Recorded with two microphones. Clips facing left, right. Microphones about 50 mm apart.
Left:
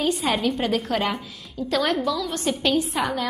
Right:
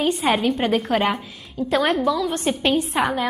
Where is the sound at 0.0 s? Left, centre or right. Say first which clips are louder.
Right 2 dB; right.